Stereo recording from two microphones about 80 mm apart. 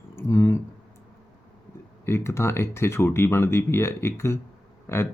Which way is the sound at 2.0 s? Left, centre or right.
Left.